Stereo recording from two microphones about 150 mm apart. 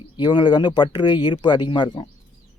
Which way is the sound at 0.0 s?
30° left (ahead or behind).